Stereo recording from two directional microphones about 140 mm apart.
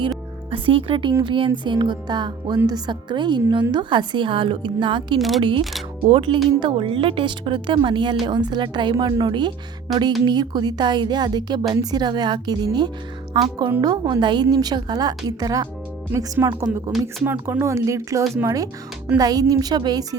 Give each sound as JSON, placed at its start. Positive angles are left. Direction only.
{"t": 0.5, "sound": "a woman's voice", "side_deg": -40}
{"t": 17.2, "sound": "speech", "side_deg": -15}